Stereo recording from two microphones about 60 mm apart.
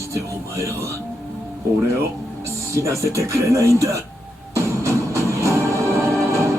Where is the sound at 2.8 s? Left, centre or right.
Right.